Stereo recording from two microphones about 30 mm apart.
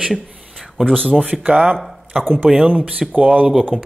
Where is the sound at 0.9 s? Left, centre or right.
Centre.